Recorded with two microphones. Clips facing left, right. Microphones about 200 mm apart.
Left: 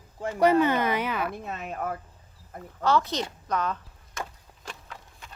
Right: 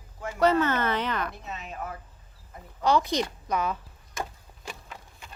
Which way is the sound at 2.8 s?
15° right (ahead or behind).